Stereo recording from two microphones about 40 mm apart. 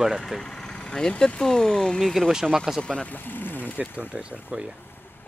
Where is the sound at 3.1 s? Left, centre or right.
Left.